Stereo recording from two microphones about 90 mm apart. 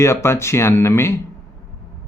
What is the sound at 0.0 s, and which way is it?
Speech, 30° left (ahead or behind).